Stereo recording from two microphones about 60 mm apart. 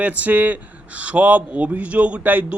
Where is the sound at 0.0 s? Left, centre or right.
Right.